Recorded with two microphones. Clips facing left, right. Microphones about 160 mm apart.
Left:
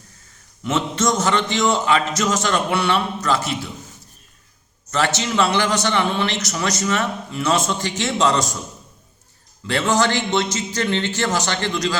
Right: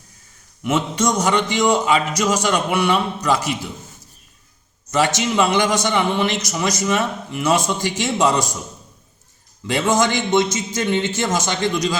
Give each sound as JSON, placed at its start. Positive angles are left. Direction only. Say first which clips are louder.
{"t": 0.6, "sound": "a man's voice", "louder": "right 1 dB", "side_deg": -10}
{"t": 4.9, "sound": "a man's voice", "louder": "right 2 dB", "side_deg": -15}
{"t": 9.6, "sound": "a man's voice", "louder": "right 1 dB", "side_deg": -15}